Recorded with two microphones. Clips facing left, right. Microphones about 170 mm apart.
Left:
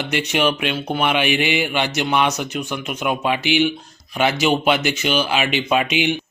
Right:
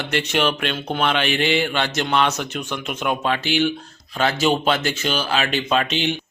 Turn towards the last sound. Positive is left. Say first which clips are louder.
# left 2 dB
turn(degrees=10)  # may be behind; listen again after turning